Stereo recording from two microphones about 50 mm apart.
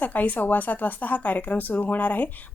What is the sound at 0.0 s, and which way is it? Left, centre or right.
A woman's voice, left.